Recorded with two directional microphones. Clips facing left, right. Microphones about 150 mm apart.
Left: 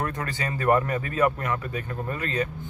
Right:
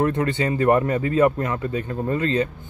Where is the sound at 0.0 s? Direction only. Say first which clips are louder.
Right 9 dB; 25° right (ahead or behind).